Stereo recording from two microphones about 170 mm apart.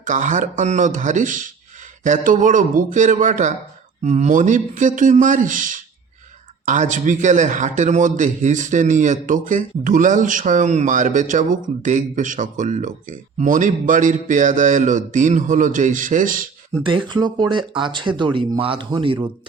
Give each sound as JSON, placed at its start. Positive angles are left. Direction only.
{"t": 0.0, "sound": "a man's voice", "side_deg": -45}
{"t": 16.7, "sound": "speech", "side_deg": -30}